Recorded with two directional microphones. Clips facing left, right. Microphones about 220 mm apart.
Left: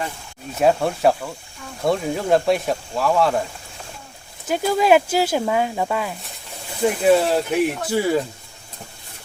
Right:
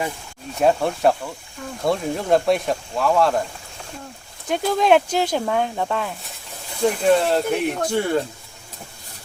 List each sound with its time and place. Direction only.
0.6 s speech: centre (ahead or behind)
4.4 s speech: 5° left (ahead or behind)